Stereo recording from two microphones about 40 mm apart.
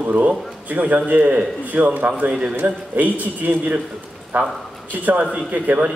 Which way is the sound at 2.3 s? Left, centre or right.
Right.